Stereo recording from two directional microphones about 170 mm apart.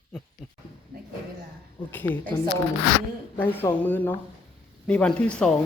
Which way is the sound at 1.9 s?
10° left (ahead or behind).